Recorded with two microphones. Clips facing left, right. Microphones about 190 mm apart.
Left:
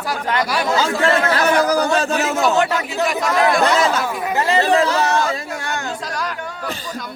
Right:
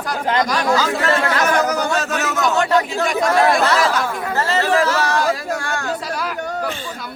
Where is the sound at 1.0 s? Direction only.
30° left (ahead or behind).